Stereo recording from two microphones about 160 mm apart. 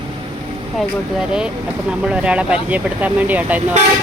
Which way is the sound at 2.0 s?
5° right (ahead or behind).